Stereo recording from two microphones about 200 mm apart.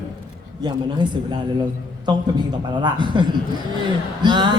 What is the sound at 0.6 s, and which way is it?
A man's voice, 20° right (ahead or behind).